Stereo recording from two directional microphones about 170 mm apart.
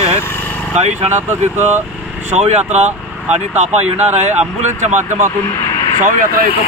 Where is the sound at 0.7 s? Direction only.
40° right (ahead or behind).